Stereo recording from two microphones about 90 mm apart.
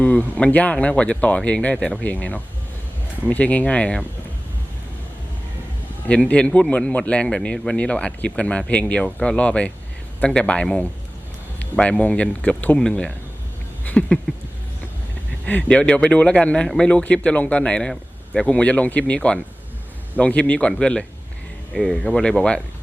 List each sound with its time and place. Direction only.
0.0 s speech: 15° left (ahead or behind)
6.1 s speech: 15° left (ahead or behind)
13.8 s a sound: 15° left (ahead or behind)
15.4 s speech: 15° left (ahead or behind)